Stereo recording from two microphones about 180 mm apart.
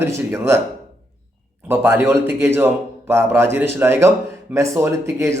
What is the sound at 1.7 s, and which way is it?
Speech, 10° right (ahead or behind).